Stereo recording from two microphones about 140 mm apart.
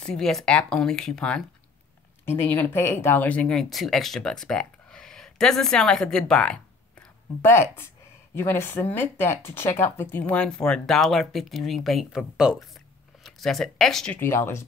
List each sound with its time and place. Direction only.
0.0 s speech: 5° left (ahead or behind)
7.4 s speech: 15° left (ahead or behind)
14.2 s speech: 15° left (ahead or behind)